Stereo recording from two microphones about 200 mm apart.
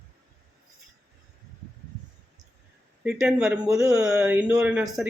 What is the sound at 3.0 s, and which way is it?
Speech, 5° right (ahead or behind).